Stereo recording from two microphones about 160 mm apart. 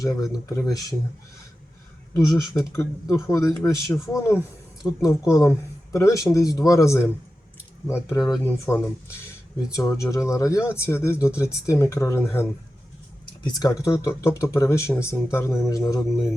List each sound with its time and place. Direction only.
0.0 s speech: 20° left (ahead or behind)
2.1 s speech: 20° left (ahead or behind)